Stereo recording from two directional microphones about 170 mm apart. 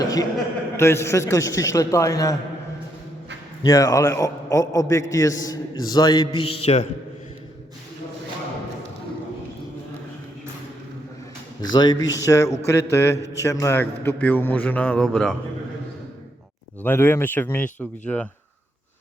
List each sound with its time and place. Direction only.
0.0 s a man's voice: 20° left (ahead or behind)
3.6 s a man's voice: 20° left (ahead or behind)
6.4 s mantra: 35° left (ahead or behind)
11.6 s a man's voice: 25° left (ahead or behind); by 15.4 s 5° left (ahead or behind)
16.8 s a man's voice: 15° left (ahead or behind)